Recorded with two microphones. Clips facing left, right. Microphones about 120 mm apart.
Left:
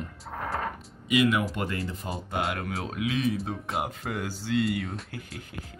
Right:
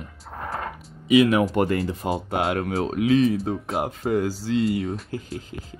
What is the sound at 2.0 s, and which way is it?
Speech, 75° right (ahead or behind).